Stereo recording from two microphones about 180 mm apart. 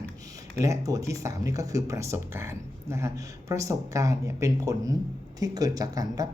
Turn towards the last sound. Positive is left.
turn(degrees=-20)  # may be behind; listen again after turning